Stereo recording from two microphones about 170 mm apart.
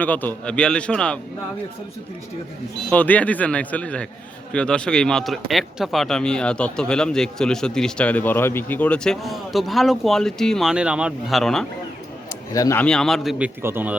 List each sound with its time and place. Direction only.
0.0 s a man's voice: 10° left (ahead or behind)
2.9 s a man's voice: 10° left (ahead or behind)
12.3 s speech: 15° left (ahead or behind)
12.8 s speech: 5° left (ahead or behind)
13.6 s speech: 15° right (ahead or behind)